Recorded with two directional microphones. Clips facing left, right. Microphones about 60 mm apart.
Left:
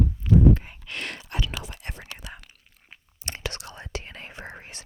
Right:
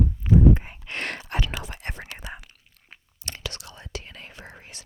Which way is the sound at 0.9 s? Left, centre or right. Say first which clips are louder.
Right 3 dB; right.